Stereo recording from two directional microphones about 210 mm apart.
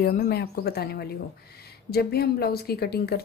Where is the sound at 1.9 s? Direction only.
50° left (ahead or behind).